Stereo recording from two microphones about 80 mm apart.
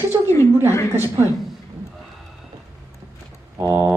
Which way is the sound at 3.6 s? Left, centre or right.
Right.